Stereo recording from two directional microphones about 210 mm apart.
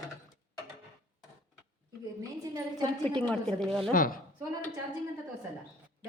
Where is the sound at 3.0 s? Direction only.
5° left (ahead or behind).